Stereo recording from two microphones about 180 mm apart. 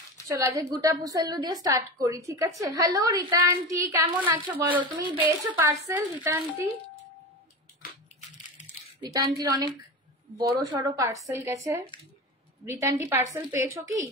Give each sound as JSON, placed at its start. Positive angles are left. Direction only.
{"t": 0.3, "sound": "a woman's voice", "side_deg": -15}
{"t": 4.7, "sound": "a woman's voice", "side_deg": -25}
{"t": 5.9, "sound": "a woman's voice", "side_deg": -15}
{"t": 7.8, "sound": "crushing", "side_deg": 55}
{"t": 9.0, "sound": "a woman's voice", "side_deg": -20}